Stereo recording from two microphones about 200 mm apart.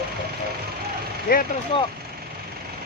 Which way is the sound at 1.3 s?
45° left (ahead or behind).